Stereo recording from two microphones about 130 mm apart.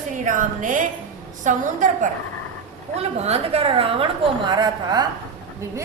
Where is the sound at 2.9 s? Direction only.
55° right (ahead or behind); by 5.1 s 35° right (ahead or behind).